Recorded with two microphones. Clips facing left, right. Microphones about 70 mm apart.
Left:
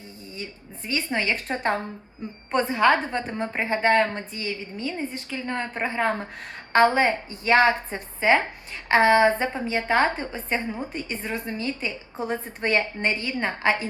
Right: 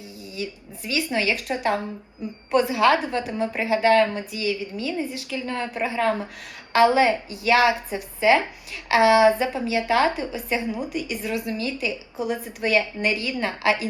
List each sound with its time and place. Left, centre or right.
0.3 s a woman's voice: left